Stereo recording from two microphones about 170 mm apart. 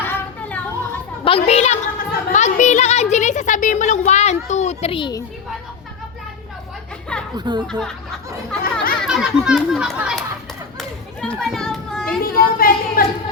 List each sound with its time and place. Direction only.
0.0 s a sound: 10° left (ahead or behind)
1.2 s a child's voice: 35° left (ahead or behind)
7.3 s speech: 25° right (ahead or behind)
7.7 s speech: 5° left (ahead or behind)
9.0 s speech: 5° right (ahead or behind)
10.8 s children playing: 5° left (ahead or behind)
12.2 s a woman's voice: 60° left (ahead or behind)